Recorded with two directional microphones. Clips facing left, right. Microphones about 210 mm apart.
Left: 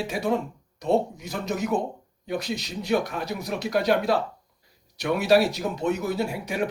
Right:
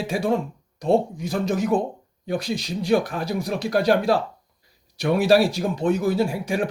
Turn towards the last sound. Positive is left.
turn(degrees=-30)  # may be behind; listen again after turning